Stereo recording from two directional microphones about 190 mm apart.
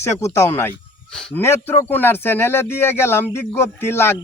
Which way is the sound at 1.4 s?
15° left (ahead or behind).